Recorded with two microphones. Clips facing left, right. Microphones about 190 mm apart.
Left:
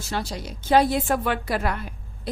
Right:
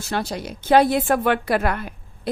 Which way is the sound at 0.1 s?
55° right (ahead or behind).